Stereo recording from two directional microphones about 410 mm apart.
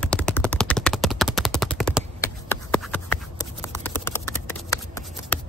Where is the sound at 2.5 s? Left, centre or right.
Centre.